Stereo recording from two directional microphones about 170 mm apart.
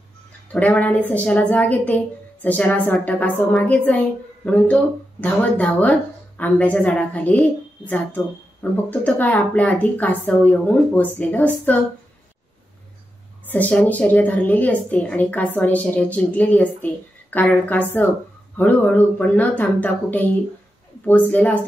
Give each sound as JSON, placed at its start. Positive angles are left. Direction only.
{"t": 0.5, "sound": "a woman's voice", "side_deg": 10}
{"t": 13.5, "sound": "a woman's voice", "side_deg": 10}